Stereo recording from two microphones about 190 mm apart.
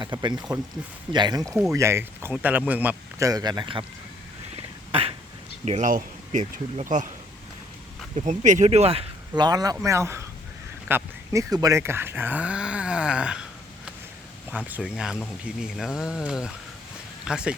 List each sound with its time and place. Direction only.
0.0 s speech: 25° right (ahead or behind)
4.5 s a sound: 30° right (ahead or behind)
5.6 s speech: 40° right (ahead or behind)
8.1 s speech: 35° right (ahead or behind); by 13.4 s 5° right (ahead or behind)
14.5 s speech: 5° right (ahead or behind)